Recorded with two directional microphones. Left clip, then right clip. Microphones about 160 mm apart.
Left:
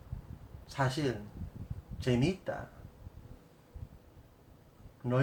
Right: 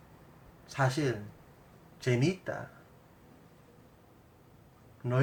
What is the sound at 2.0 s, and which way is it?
Speech, 5° left (ahead or behind).